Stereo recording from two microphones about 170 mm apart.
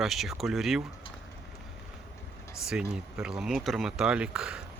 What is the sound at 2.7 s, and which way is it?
Speech, 5° right (ahead or behind).